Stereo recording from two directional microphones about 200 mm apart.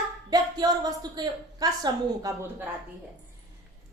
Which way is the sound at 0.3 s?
20° right (ahead or behind).